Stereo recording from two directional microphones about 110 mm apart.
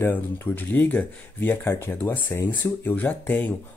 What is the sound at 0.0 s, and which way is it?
Speech, 20° left (ahead or behind).